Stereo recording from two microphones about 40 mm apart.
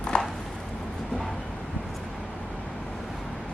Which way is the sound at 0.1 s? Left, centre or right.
Left.